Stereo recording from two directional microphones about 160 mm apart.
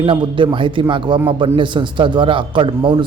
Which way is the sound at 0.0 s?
30° right (ahead or behind).